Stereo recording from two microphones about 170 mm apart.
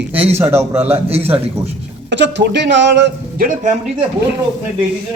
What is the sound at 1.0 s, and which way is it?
Speech, 35° right (ahead or behind).